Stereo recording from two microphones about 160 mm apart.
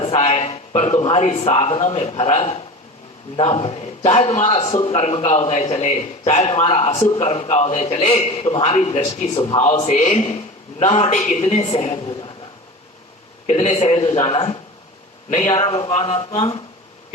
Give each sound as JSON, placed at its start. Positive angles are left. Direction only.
{"t": 0.0, "sound": "a man's voice", "side_deg": 40}
{"t": 4.5, "sound": "a man's voice", "side_deg": 30}
{"t": 4.9, "sound": "a man's voice", "side_deg": 40}
{"t": 13.5, "sound": "a man's voice", "side_deg": 45}